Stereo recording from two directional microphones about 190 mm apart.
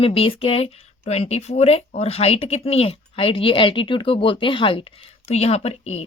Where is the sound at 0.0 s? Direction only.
30° left (ahead or behind).